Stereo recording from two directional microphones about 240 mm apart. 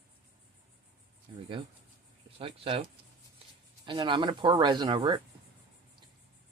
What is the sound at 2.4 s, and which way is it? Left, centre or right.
Speech, right.